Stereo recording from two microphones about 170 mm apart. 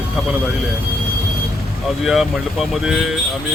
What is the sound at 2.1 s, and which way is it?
Speech, centre (ahead or behind).